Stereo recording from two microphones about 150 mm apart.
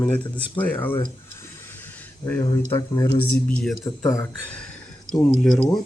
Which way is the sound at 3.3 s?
5° left (ahead or behind).